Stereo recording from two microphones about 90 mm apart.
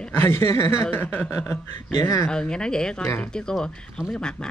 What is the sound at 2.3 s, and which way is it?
A woman's voice, 10° left (ahead or behind).